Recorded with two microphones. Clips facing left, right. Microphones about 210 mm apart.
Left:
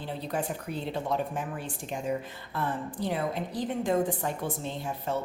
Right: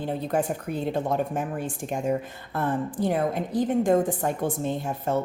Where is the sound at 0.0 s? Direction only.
50° right (ahead or behind).